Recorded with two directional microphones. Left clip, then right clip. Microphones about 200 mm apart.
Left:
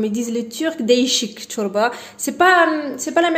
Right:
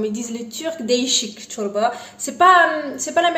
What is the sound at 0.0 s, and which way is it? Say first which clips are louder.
Speech: left 3 dB; 40° left (ahead or behind).